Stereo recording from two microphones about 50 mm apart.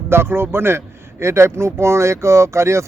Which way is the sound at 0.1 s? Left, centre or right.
Right.